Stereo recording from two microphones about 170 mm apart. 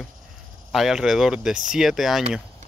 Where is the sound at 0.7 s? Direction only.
Centre (ahead or behind).